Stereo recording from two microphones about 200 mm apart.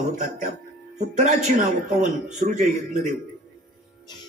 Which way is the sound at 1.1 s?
40° right (ahead or behind).